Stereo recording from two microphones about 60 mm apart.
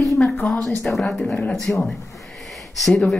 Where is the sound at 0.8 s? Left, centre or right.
Centre.